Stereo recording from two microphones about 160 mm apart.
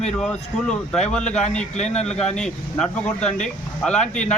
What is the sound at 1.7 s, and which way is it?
Speech, 45° left (ahead or behind).